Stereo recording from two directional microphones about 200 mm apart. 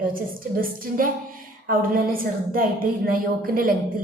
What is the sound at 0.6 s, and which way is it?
Speech, 45° right (ahead or behind).